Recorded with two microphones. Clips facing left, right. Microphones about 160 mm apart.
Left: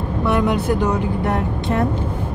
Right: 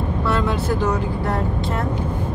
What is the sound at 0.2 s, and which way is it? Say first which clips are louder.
Speech: left 4 dB; 15° left (ahead or behind).